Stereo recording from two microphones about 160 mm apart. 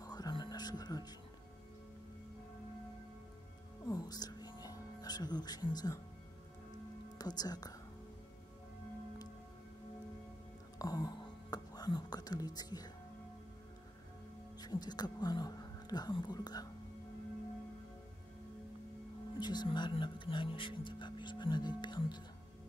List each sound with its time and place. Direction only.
0.0 s music: 25° left (ahead or behind)
3.8 s music: 25° left (ahead or behind)
7.2 s speech: 25° left (ahead or behind)
10.8 s whispering: 25° left (ahead or behind)
14.6 s speech: 25° left (ahead or behind)
19.4 s speech: 25° left (ahead or behind)